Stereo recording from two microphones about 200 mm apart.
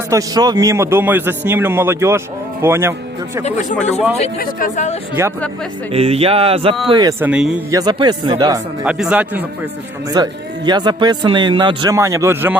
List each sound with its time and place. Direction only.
0.1 s a man's voice: 20° right (ahead or behind)
3.4 s speech: 35° left (ahead or behind)
5.2 s a man's voice: 10° right (ahead or behind)
5.9 s a man's voice: 30° right (ahead or behind); by 7.5 s 5° right (ahead or behind)
7.7 s a man's voice: 20° right (ahead or behind)
8.8 s speech: 5° right (ahead or behind)
10.2 s a man's voice: 20° right (ahead or behind)